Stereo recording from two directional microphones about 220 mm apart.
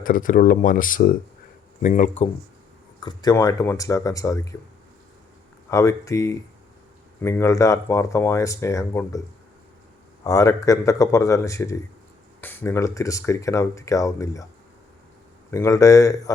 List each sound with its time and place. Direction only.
0.0 s speech: 40° left (ahead or behind)
3.0 s speech: 20° left (ahead or behind)
5.7 s speech: 15° left (ahead or behind)
10.2 s speech: 15° left (ahead or behind)
15.4 s speech: 15° left (ahead or behind)